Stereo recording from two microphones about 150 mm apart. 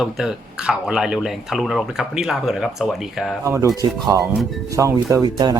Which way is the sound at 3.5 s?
20° right (ahead or behind).